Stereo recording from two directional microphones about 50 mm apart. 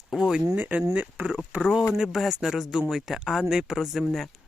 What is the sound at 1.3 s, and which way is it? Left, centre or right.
Speech, right.